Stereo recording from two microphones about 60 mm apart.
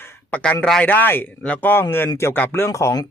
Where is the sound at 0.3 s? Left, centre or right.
Left.